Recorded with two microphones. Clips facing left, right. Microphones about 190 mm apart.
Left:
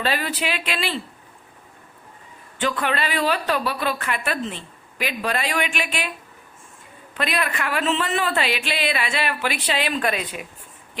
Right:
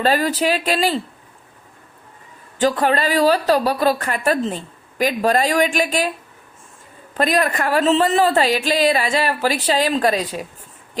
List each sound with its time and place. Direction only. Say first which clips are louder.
0.0 s speech: right 7 dB; 40° right (ahead or behind)
2.6 s speech: right 6 dB; 35° right (ahead or behind)
7.1 s speech: right 7 dB; 40° right (ahead or behind)